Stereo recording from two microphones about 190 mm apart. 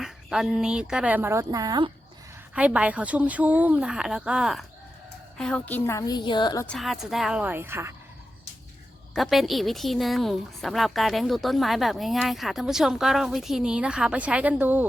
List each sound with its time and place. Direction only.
0.0 s a woman's voice: centre (ahead or behind); by 1.9 s 20° right (ahead or behind)
2.6 s a woman's voice: 5° right (ahead or behind); by 6.7 s 20° left (ahead or behind)
6.7 s a woman's voice: centre (ahead or behind)
9.1 s a woman's voice: centre (ahead or behind)